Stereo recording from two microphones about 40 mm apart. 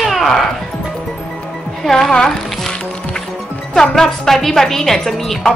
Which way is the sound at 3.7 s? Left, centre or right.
Centre.